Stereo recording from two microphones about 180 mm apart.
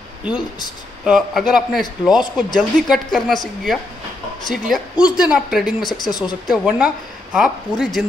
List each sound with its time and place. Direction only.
1.0 s a woman's voice: 5° right (ahead or behind)
6.1 s speech: 25° left (ahead or behind)
6.5 s a woman's voice: 5° right (ahead or behind)